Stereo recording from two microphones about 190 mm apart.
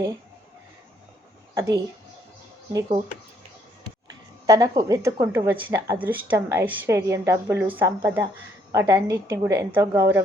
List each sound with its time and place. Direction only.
1.5 s a woman's voice: 15° right (ahead or behind)
4.4 s a woman's voice: 15° right (ahead or behind)